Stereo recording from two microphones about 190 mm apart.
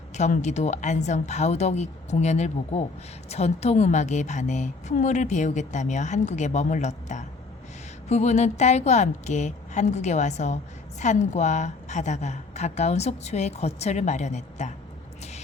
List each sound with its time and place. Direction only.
0.2 s a woman's voice: 35° left (ahead or behind)